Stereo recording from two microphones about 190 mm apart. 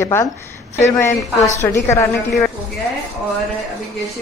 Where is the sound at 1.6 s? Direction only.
15° left (ahead or behind).